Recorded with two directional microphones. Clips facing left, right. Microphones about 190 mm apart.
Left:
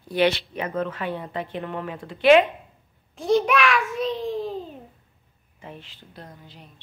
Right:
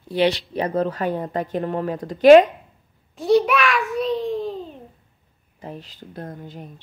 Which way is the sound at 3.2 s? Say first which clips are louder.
Right 3 dB; centre (ahead or behind).